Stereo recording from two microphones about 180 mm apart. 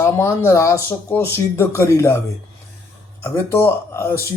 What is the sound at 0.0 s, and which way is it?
Speech, 15° left (ahead or behind).